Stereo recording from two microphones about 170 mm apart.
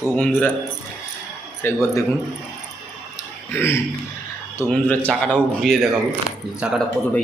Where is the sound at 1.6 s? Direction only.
15° left (ahead or behind).